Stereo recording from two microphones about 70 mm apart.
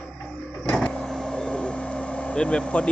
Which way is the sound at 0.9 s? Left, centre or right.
Centre.